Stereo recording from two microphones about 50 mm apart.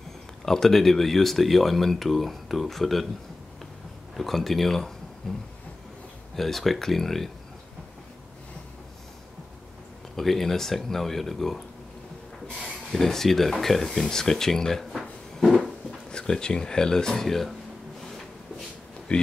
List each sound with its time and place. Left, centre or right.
0.5 s speech: centre
4.2 s speech: centre
10.1 s speech: centre
12.6 s speech: centre
16.1 s speech: centre
19.1 s speech: left